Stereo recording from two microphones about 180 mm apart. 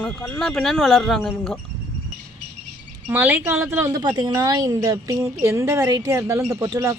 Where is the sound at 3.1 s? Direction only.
10° right (ahead or behind).